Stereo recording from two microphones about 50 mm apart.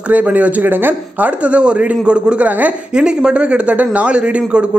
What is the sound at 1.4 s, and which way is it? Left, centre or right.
Speech, right.